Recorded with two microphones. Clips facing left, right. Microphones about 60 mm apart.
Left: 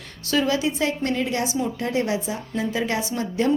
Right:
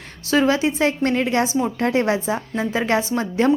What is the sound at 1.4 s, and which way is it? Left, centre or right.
Speech, right.